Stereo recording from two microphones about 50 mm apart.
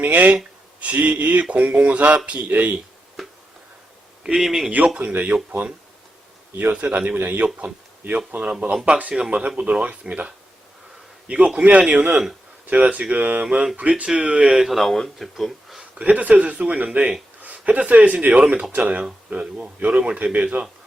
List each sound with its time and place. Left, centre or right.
0.0 s a man's voice: right
3.2 s a sound: centre
4.4 s speech: centre
5.2 s speech: right
6.7 s a man's voice: right
8.7 s speech: centre
13.9 s speech: centre
14.7 s speech: centre
15.8 s speech: right